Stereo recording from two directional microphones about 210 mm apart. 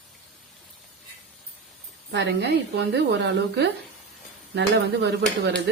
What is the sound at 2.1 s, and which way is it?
A woman's voice, 55° right (ahead or behind).